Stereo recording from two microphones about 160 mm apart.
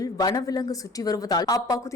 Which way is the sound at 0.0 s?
25° left (ahead or behind).